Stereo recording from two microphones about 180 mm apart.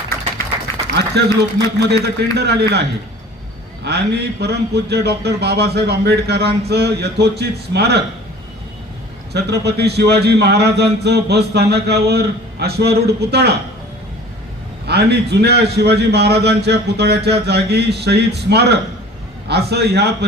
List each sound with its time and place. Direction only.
0.9 s a man's voice: 65° right (ahead or behind)
3.8 s a man's voice: 65° right (ahead or behind)
9.3 s a man's voice: 65° right (ahead or behind)
14.8 s a man's voice: 65° right (ahead or behind)